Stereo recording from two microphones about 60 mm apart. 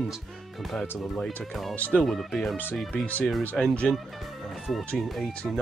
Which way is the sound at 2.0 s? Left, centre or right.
Centre.